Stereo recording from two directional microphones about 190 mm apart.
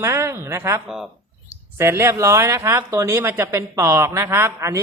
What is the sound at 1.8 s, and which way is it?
A woman's voice, 15° right (ahead or behind).